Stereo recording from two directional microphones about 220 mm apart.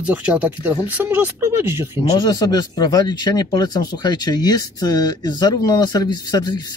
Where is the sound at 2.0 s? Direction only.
20° left (ahead or behind).